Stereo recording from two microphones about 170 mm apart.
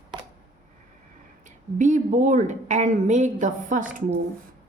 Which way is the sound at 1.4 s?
45° right (ahead or behind).